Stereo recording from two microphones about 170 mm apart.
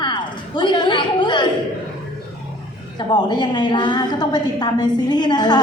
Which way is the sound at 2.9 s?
25° left (ahead or behind).